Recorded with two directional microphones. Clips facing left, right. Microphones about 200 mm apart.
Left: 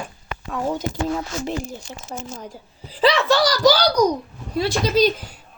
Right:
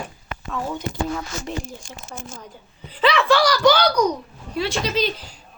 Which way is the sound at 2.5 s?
35° left (ahead or behind).